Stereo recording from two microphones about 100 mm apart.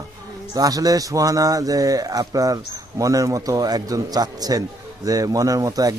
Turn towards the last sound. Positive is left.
turn(degrees=-35)  # may be behind; listen again after turning